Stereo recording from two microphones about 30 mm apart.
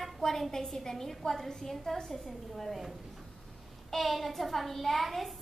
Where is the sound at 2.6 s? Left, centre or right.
Centre.